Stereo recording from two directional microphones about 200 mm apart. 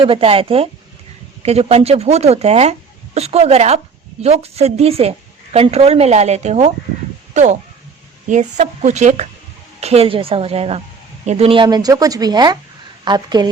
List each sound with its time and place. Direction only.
0.0 s speech: 25° right (ahead or behind)
8.3 s speech: 35° right (ahead or behind); by 13.5 s 20° right (ahead or behind)